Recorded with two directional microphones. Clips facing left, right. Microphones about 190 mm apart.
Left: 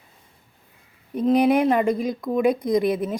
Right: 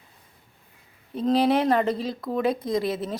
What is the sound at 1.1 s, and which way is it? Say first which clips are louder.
A woman's voice: left 3 dB; 15° left (ahead or behind).